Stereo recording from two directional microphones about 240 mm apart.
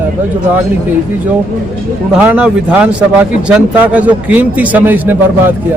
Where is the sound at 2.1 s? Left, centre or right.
Centre.